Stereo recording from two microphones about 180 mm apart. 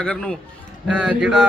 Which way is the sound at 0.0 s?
5° left (ahead or behind).